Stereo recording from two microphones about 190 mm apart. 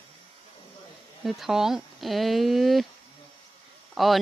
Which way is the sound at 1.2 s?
Centre (ahead or behind).